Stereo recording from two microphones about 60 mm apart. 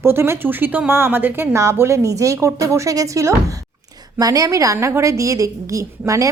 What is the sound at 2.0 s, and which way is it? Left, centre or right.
A woman's voice, right.